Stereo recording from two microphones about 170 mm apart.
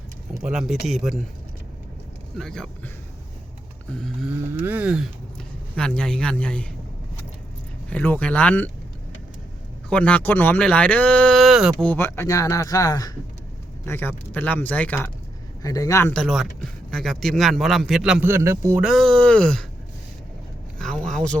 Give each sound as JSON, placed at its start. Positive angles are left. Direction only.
{"t": 0.4, "sound": "a man's voice", "side_deg": -5}
{"t": 2.4, "sound": "a man's voice", "side_deg": 5}
{"t": 3.9, "sound": "a man's voice", "side_deg": 0}
{"t": 4.3, "sound": "speech", "side_deg": -10}
{"t": 5.7, "sound": "a man's voice", "side_deg": 5}
{"t": 7.9, "sound": "speech", "side_deg": 10}
{"t": 9.9, "sound": "speech", "side_deg": 10}
{"t": 11.9, "sound": "a man's voice", "side_deg": 15}
{"t": 15.6, "sound": "a man's voice", "side_deg": 20}
{"t": 16.1, "sound": "a man's voice", "side_deg": 0}
{"t": 18.3, "sound": "speech", "side_deg": -15}
{"t": 18.8, "sound": "a man's voice", "side_deg": 0}
{"t": 20.7, "sound": "a sound", "side_deg": 5}